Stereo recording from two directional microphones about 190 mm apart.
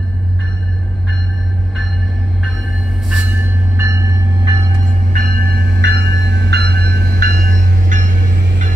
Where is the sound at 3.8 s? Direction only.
15° right (ahead or behind).